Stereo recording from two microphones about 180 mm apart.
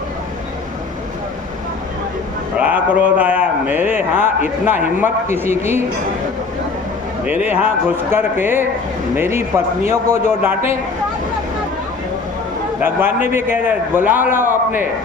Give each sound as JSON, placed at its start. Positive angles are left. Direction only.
{"t": 2.6, "sound": "a man's voice", "side_deg": -10}
{"t": 7.3, "sound": "a man's voice", "side_deg": -10}
{"t": 12.8, "sound": "a man's voice", "side_deg": -10}